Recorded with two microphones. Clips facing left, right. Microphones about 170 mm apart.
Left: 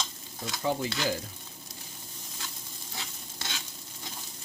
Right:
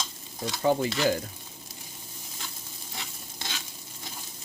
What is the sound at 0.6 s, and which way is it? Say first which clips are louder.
Stir: right 6 dB; 60° right (ahead or behind).